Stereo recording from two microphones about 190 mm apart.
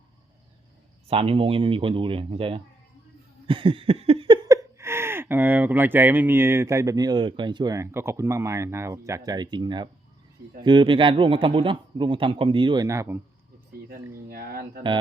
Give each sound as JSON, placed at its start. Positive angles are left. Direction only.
{"t": 1.0, "sound": "a man's voice", "side_deg": -30}
{"t": 3.4, "sound": "a sound", "side_deg": -25}
{"t": 4.4, "sound": "a man's voice", "side_deg": -15}
{"t": 14.3, "sound": "speech", "side_deg": -55}